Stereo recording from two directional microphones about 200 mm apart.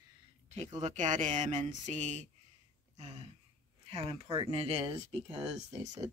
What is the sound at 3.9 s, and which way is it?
Speech, 30° right (ahead or behind).